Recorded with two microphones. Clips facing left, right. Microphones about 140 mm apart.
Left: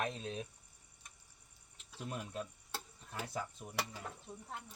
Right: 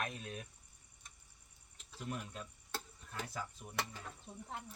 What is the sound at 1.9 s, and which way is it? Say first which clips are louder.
Stir: left 2 dB; 10° left (ahead or behind).